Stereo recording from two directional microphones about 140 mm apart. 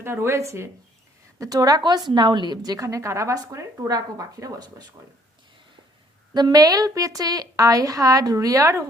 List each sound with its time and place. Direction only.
0.0 s a woman's voice: 20° right (ahead or behind)
6.3 s a woman's voice: 30° right (ahead or behind)